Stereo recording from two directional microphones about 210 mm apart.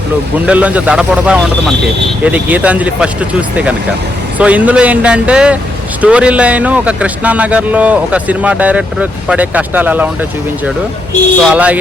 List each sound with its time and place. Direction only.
0.3 s a man's voice: 5° right (ahead or behind)
11.5 s speech: 5° right (ahead or behind)